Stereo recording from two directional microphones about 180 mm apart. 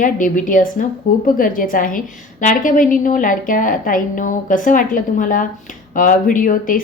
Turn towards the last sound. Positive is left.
turn(degrees=50)  # may be behind; listen again after turning